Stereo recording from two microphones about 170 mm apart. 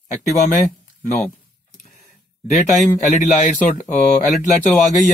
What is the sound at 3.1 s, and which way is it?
Speech, 45° left (ahead or behind).